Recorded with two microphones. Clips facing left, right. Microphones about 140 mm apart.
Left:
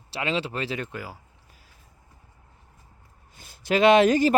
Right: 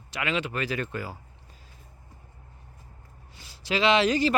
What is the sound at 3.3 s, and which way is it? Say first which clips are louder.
Speech: left 5 dB; 50° left (ahead or behind).